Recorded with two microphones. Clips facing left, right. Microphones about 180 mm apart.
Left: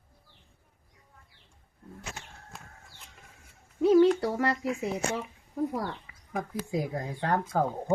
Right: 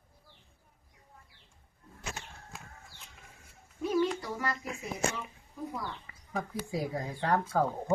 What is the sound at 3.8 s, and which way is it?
Speech, 70° left (ahead or behind).